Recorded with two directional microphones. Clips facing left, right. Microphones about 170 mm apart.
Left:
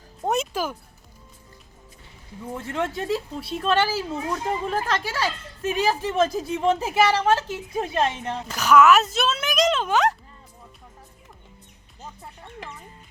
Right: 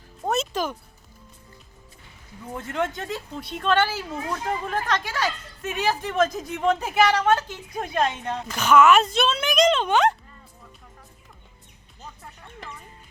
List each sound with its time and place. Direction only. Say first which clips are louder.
0.3 s music: left 1 dB; 10° left (ahead or behind)
2.6 s a woman's voice: left 2 dB; 30° left (ahead or behind)
8.5 s speech: even; centre (ahead or behind)